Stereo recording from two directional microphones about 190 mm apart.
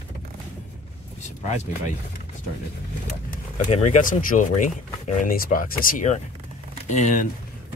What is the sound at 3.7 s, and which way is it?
Speech, 40° left (ahead or behind).